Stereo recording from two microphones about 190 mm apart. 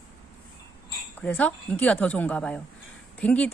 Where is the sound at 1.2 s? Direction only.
10° left (ahead or behind).